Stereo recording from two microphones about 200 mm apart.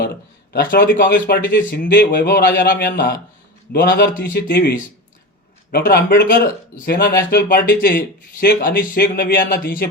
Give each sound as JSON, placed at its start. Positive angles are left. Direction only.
{"t": 0.0, "sound": "speech", "side_deg": 55}
{"t": 5.7, "sound": "speech", "side_deg": 45}